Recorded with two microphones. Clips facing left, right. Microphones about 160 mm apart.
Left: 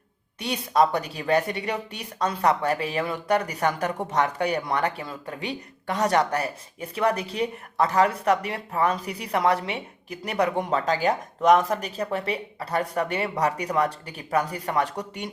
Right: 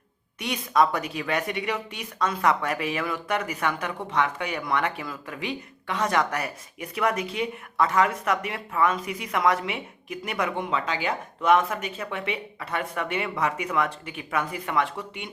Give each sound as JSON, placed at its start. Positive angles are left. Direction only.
{"t": 0.3, "sound": "speech", "side_deg": 35}